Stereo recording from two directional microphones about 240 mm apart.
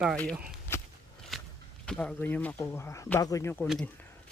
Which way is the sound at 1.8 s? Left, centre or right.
Centre.